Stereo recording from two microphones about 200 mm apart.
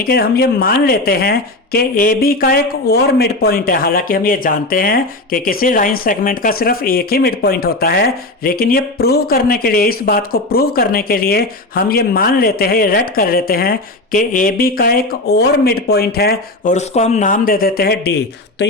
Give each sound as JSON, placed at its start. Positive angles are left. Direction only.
{"t": 0.0, "sound": "speech", "side_deg": 50}
{"t": 16.7, "sound": "speech", "side_deg": 35}